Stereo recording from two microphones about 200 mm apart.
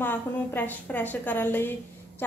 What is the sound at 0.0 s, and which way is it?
A woman's voice, 10° left (ahead or behind).